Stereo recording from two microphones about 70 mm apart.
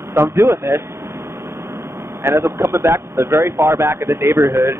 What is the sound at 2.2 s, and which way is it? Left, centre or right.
Speech, right.